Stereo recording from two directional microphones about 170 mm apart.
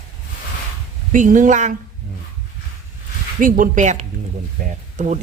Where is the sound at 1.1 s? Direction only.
50° right (ahead or behind).